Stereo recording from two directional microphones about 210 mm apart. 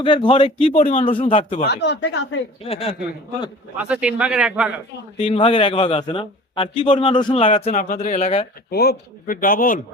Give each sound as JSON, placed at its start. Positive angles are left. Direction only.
{"t": 0.0, "sound": "a man's voice", "side_deg": 20}
{"t": 0.7, "sound": "a man's voice", "side_deg": 40}
{"t": 1.0, "sound": "a man's voice", "side_deg": 30}
{"t": 1.6, "sound": "speech", "side_deg": 55}
{"t": 2.6, "sound": "a man's voice", "side_deg": 30}
{"t": 3.8, "sound": "a man's voice", "side_deg": -5}
{"t": 5.1, "sound": "a man's voice", "side_deg": 30}
{"t": 8.7, "sound": "a man's voice", "side_deg": 50}